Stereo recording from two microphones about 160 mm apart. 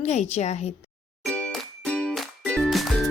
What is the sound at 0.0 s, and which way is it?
Speech, 45° left (ahead or behind).